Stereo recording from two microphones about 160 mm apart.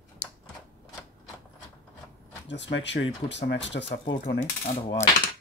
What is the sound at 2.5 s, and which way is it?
Speech, 90° left.